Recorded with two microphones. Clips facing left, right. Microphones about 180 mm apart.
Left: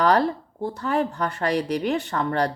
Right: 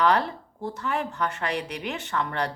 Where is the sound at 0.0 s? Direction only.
35° left (ahead or behind).